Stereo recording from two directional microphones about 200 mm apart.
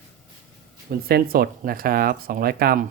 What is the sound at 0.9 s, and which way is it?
Speech, 50° right (ahead or behind).